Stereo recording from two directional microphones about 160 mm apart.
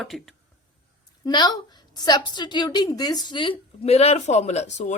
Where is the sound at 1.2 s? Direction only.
25° left (ahead or behind).